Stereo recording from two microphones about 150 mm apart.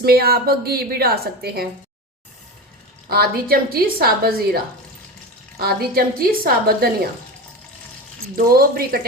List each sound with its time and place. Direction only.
0.0 s a woman's voice: 90° right
3.1 s a woman's voice: 90° right
8.4 s speech: 80° right